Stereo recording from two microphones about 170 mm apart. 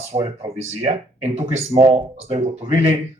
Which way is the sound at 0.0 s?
40° right (ahead or behind).